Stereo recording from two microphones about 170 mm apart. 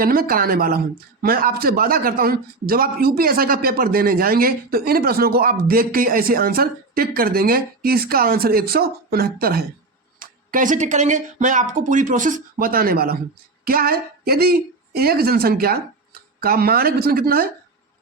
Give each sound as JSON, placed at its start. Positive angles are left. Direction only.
{"t": 0.0, "sound": "a man's voice", "side_deg": -60}
{"t": 10.2, "sound": "a man's voice", "side_deg": -50}